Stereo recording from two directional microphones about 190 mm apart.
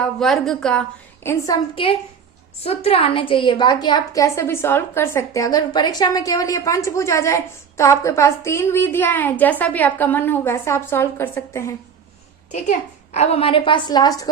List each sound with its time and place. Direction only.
0.0 s a woman's voice: centre (ahead or behind)
1.7 s a woman's voice: 30° left (ahead or behind)
13.1 s a woman's voice: 30° left (ahead or behind)